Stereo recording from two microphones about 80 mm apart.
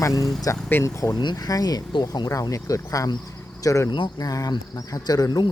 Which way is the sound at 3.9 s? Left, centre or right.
Left.